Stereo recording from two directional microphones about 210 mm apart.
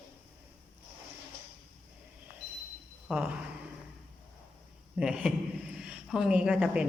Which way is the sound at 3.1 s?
5° right (ahead or behind).